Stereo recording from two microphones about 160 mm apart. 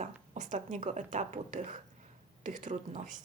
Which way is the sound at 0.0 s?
50° right (ahead or behind).